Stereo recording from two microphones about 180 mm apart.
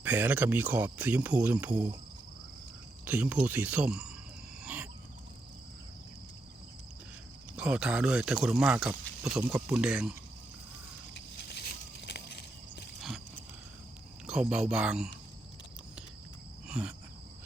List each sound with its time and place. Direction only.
0.0 s speech: 10° right (ahead or behind)
3.0 s speech: 10° right (ahead or behind)
4.6 s wild animals: 10° right (ahead or behind)
7.5 s speech: 5° right (ahead or behind)
11.1 s a sound: 65° left (ahead or behind)
13.0 s a sound: centre (ahead or behind)
14.3 s speech: 5° right (ahead or behind)
16.6 s cricket: 5° right (ahead or behind)